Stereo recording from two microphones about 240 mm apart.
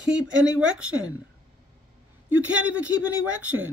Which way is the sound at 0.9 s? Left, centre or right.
Right.